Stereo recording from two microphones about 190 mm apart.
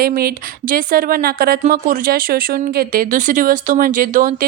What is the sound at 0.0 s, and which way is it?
Speech, 50° right (ahead or behind).